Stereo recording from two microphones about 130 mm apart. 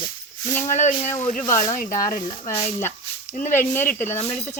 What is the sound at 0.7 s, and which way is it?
Speech, 65° left (ahead or behind).